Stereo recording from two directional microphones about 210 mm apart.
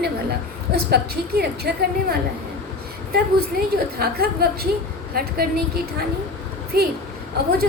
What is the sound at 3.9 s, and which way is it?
A woman's voice, 50° right (ahead or behind).